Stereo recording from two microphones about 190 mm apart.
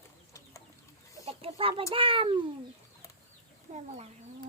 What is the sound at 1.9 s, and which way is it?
Speech, 30° right (ahead or behind).